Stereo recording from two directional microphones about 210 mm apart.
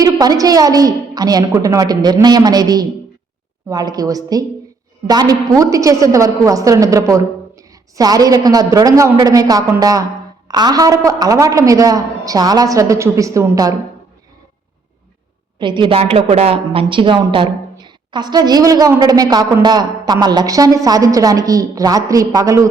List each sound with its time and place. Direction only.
0.0 s a woman's voice: 15° right (ahead or behind)
15.5 s a woman's voice: 20° right (ahead or behind)